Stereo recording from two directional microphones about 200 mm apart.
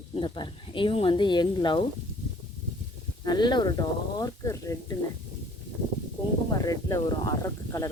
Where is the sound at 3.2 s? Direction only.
20° left (ahead or behind).